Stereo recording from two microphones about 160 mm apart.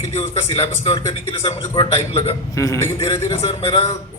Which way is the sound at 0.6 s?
35° left (ahead or behind).